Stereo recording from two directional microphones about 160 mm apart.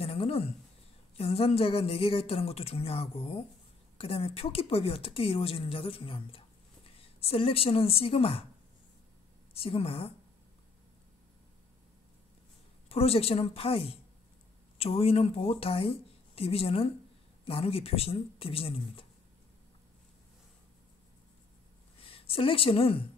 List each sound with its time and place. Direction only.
0.0 s a sound: 40° left (ahead or behind)
1.1 s speech: 40° left (ahead or behind)
9.5 s speech: 35° left (ahead or behind)
12.8 s speech: 40° left (ahead or behind)
22.0 s a woman's voice: 35° left (ahead or behind)